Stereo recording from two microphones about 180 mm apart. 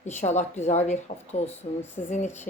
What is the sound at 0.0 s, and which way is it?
Speech, 40° left (ahead or behind).